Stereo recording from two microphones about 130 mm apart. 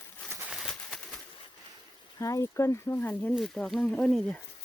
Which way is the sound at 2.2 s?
25° left (ahead or behind).